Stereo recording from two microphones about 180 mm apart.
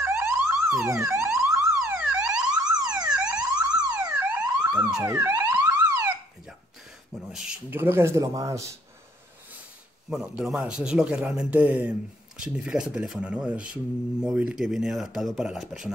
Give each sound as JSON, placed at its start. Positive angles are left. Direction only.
{"t": 0.0, "sound": "siren", "side_deg": -15}
{"t": 1.0, "sound": "car alarm", "side_deg": -15}
{"t": 4.6, "sound": "siren", "side_deg": -5}
{"t": 5.0, "sound": "car alarm", "side_deg": -15}
{"t": 7.2, "sound": "speech", "side_deg": -5}
{"t": 10.0, "sound": "speech", "side_deg": -5}